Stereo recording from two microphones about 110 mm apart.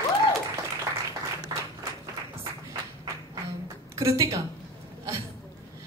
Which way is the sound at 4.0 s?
30° right (ahead or behind).